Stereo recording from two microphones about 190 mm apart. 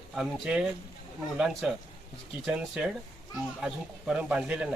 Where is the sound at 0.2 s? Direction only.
Centre (ahead or behind).